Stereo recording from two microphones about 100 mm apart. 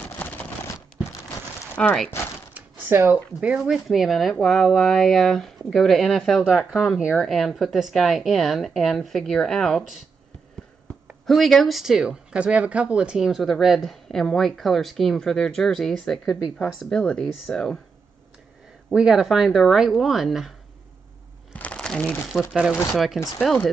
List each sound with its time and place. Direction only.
1.8 s speech: 10° left (ahead or behind)
2.5 s a sound: 20° right (ahead or behind)
3.3 s speech: 10° right (ahead or behind)
11.2 s speech: centre (ahead or behind)
18.9 s speech: 5° right (ahead or behind)
21.5 s crumpling: 10° left (ahead or behind)
22.3 s speech: 5° right (ahead or behind)